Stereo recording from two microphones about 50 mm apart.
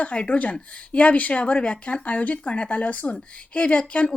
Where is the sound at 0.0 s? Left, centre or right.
Left.